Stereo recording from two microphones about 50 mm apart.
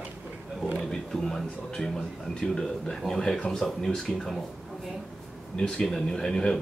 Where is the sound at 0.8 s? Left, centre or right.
Centre.